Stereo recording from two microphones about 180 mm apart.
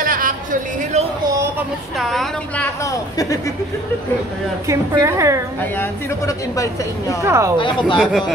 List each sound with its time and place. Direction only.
0.0 s a sound: 50° right (ahead or behind)
2.0 s a woman's voice: centre (ahead or behind); by 3.5 s 20° left (ahead or behind)
4.6 s a woman's voice: 15° right (ahead or behind)
5.6 s a woman's voice: 15° left (ahead or behind)
7.2 s a woman's voice: 15° right (ahead or behind)
7.5 s speech: 25° left (ahead or behind)